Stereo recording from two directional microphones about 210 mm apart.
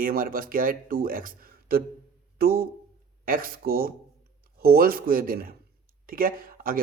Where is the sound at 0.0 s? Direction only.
45° right (ahead or behind).